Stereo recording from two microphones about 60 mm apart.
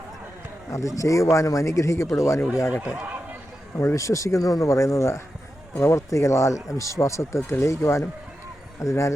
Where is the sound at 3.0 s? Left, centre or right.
Right.